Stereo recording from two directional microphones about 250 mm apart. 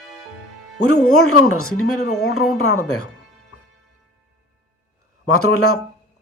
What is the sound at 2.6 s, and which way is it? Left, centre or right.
Speech, left.